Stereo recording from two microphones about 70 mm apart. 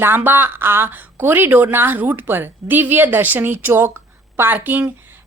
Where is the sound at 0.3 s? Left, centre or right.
Right.